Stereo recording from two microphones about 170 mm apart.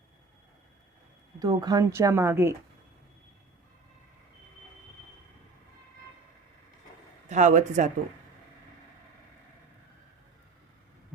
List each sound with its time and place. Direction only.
1.4 s a woman's voice: 20° right (ahead or behind)
7.3 s speech: 45° right (ahead or behind)